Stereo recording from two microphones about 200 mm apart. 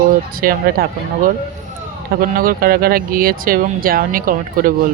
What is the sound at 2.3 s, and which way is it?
Speech, 45° right (ahead or behind).